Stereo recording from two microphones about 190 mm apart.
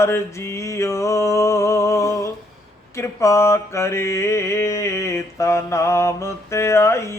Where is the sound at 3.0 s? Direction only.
15° left (ahead or behind).